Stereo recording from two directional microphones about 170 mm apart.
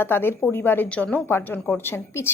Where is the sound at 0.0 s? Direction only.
10° left (ahead or behind).